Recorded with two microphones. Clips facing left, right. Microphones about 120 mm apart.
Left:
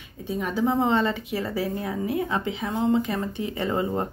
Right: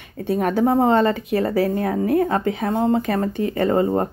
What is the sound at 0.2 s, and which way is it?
A woman's voice, 60° right (ahead or behind).